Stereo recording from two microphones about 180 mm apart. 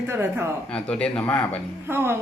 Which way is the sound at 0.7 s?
5° left (ahead or behind).